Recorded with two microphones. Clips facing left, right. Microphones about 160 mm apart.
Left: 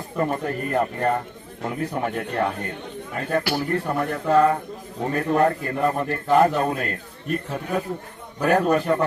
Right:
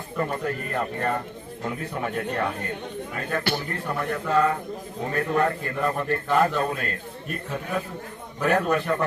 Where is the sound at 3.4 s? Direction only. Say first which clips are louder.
Left 1 dB; 10° left (ahead or behind).